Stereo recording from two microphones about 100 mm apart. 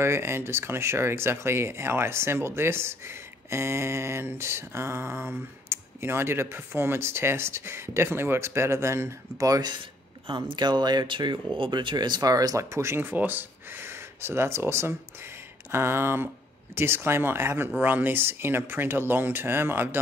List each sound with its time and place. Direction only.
0.0 s speech: 25° right (ahead or behind); by 9.8 s 40° right (ahead or behind)
10.2 s speech: 50° right (ahead or behind); by 20.0 s 20° right (ahead or behind)